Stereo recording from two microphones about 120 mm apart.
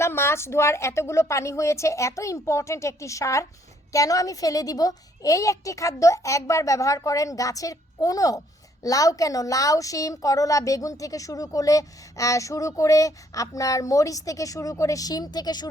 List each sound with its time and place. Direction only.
0.0 s a woman's voice: 20° left (ahead or behind)